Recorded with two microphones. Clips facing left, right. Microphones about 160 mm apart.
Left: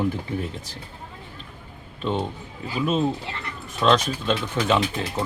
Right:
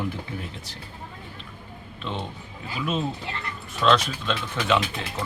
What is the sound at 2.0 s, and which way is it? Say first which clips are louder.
Speech: left 7 dB; 40° left (ahead or behind).